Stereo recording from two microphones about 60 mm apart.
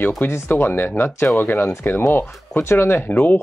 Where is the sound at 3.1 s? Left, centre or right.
Left.